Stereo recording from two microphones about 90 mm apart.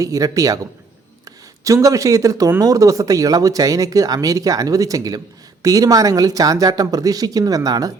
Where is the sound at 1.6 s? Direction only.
40° right (ahead or behind).